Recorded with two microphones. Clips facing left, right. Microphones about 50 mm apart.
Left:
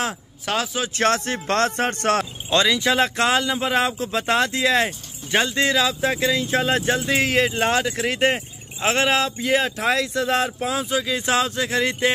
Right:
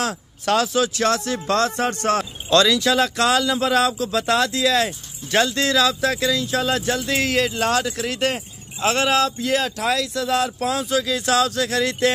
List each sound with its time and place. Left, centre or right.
0.0 s speech: centre
0.9 s speech: left
2.5 s speech: left
10.6 s speech: centre